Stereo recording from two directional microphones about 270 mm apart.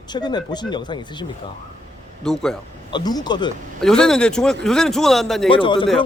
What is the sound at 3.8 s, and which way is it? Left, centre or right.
A man's voice, centre.